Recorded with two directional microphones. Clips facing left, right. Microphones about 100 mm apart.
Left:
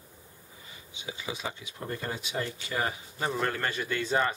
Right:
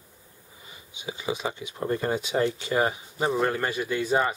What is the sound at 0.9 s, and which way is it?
Speech, 20° right (ahead or behind).